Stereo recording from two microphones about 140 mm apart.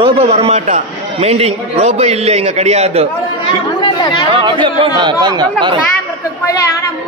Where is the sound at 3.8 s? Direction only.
40° left (ahead or behind).